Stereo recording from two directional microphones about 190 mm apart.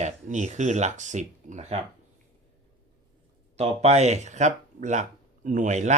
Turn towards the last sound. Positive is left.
turn(degrees=-40)  # may be behind; listen again after turning